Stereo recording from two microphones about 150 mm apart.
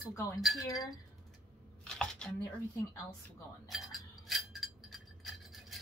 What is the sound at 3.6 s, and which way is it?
Wind chime, centre (ahead or behind).